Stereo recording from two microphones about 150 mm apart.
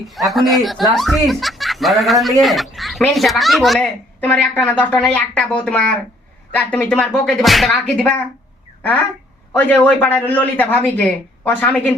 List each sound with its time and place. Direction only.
0.1 s a woman's voice: centre (ahead or behind)
9.5 s a woman's voice: 10° left (ahead or behind)